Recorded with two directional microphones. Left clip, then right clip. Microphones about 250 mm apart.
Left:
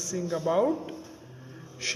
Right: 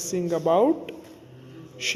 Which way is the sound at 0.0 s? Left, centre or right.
Right.